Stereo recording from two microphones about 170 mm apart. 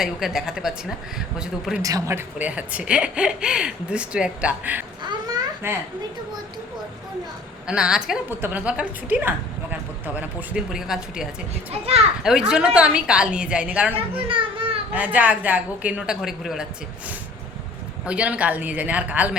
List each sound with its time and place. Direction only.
0.0 s a woman's voice: 5° right (ahead or behind)
1.8 s speech: 20° right (ahead or behind)
5.0 s babbling: 25° right (ahead or behind)
7.7 s a woman's voice: 5° right (ahead or behind)
11.7 s a child's voice: 35° right (ahead or behind)
12.2 s a woman's voice: 5° right (ahead or behind)
13.9 s a child's voice: 30° right (ahead or behind)
14.9 s speech: 10° right (ahead or behind)
18.0 s speech: 5° right (ahead or behind)